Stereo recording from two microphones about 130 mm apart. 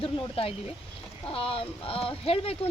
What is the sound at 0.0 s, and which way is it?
Speech, 45° left (ahead or behind).